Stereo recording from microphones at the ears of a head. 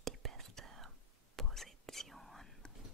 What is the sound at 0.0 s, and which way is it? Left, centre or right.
Whispering, right.